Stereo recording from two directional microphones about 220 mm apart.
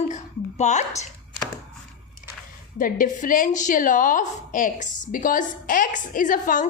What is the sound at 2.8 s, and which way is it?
A woman's voice, 40° left (ahead or behind).